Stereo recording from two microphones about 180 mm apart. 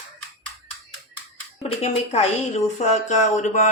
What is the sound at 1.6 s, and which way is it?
A woman's voice, 35° left (ahead or behind).